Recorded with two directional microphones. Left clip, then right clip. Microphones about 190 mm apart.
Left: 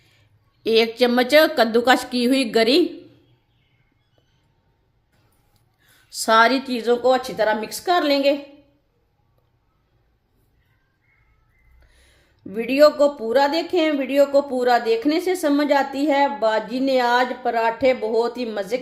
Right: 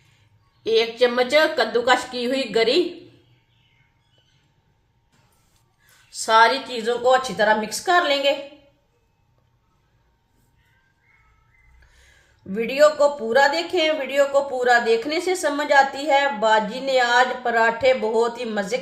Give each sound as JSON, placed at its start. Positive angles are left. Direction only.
{"t": 0.6, "sound": "speech", "side_deg": 55}
{"t": 6.1, "sound": "a woman's voice", "side_deg": 55}
{"t": 11.9, "sound": "a woman's voice", "side_deg": 40}